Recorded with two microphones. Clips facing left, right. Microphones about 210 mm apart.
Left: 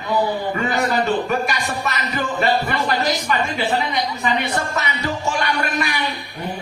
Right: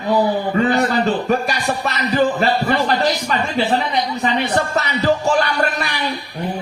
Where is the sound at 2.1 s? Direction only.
35° right (ahead or behind).